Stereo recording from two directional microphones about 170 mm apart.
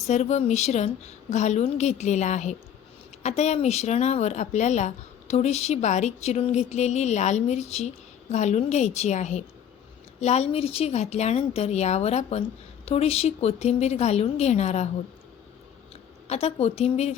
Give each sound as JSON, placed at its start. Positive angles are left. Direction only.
{"t": 0.1, "sound": "speech", "side_deg": 40}
{"t": 16.2, "sound": "speech", "side_deg": 35}